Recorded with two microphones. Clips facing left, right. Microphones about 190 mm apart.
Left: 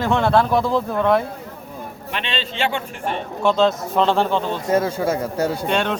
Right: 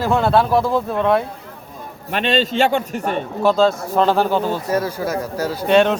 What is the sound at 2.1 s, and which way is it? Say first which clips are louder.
A man's voice: right 9 dB; 45° right (ahead or behind).